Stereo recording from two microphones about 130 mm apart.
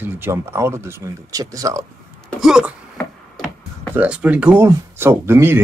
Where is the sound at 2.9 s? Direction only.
5° left (ahead or behind).